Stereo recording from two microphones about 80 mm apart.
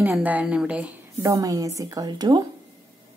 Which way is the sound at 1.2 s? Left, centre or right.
Right.